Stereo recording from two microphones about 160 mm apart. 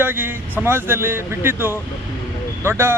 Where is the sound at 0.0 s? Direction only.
10° right (ahead or behind).